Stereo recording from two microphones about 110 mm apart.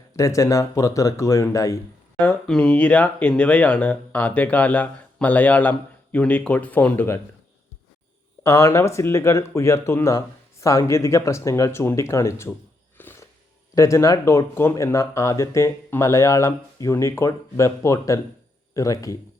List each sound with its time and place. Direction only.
0.2 s speech: 30° left (ahead or behind)
2.1 s speech: 10° left (ahead or behind)
8.4 s speech: 25° left (ahead or behind)
13.0 s music: 20° left (ahead or behind)
13.7 s speech: 30° left (ahead or behind)